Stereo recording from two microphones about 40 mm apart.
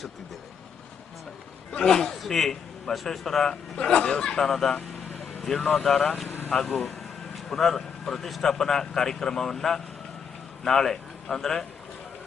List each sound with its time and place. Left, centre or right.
1.7 s a man's voice: centre
3.8 s a man's voice: left
6.2 s vehicle: left
6.5 s a man's voice: centre